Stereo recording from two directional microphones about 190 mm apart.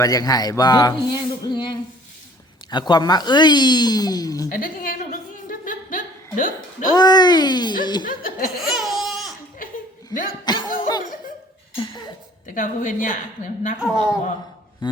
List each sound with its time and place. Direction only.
0.0 s a man's voice: 20° left (ahead or behind)
4.4 s a woman's voice: 45° left (ahead or behind)
5.5 s a sound: 45° left (ahead or behind)
6.9 s speech: 20° left (ahead or behind)
8.0 s a woman's voice: 50° left (ahead or behind)
8.5 s laughter: centre (ahead or behind)
9.6 s chuckle: 50° left (ahead or behind)
10.1 s speech: 20° left (ahead or behind)
10.5 s laughter: 20° left (ahead or behind)
11.8 s a sound: 20° left (ahead or behind)
12.5 s a woman's voice: 45° left (ahead or behind)
13.7 s speech: 5° right (ahead or behind)